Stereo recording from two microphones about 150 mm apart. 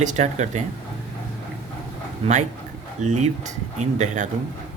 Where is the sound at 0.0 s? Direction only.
50° right (ahead or behind).